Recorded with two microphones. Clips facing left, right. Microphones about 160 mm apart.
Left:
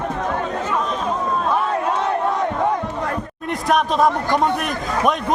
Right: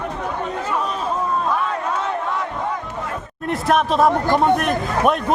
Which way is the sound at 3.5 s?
Centre (ahead or behind).